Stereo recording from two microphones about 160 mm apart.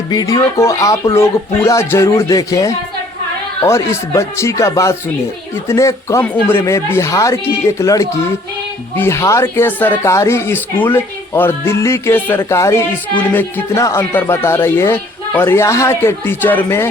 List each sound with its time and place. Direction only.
0.1 s a woman's voice: 20° left (ahead or behind)